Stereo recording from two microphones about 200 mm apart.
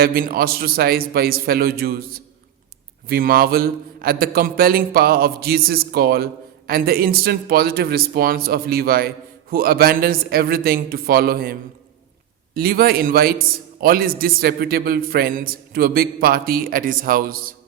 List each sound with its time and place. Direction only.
0.0 s a man's voice: 45° right (ahead or behind)
12.5 s a man's voice: 50° right (ahead or behind)